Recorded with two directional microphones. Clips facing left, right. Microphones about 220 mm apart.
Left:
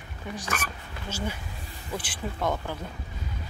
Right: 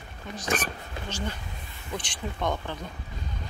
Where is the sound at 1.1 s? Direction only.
10° left (ahead or behind).